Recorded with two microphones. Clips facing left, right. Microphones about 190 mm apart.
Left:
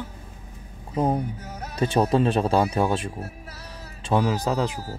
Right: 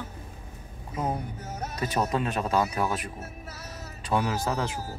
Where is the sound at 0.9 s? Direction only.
35° left (ahead or behind).